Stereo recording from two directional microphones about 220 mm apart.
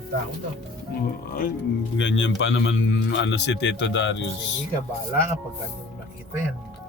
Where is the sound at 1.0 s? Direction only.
40° left (ahead or behind).